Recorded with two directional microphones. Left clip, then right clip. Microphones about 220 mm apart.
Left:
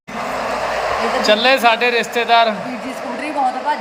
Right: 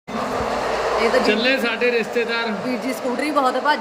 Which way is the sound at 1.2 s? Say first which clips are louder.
Left 6 dB; centre (ahead or behind).